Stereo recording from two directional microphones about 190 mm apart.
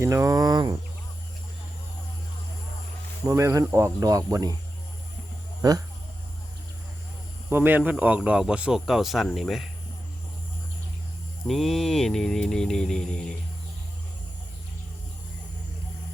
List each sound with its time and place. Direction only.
0.0 s speech: 15° right (ahead or behind)
3.2 s speech: 15° right (ahead or behind)
5.6 s speech: 20° right (ahead or behind)
7.5 s speech: 10° right (ahead or behind)
11.4 s speech: centre (ahead or behind)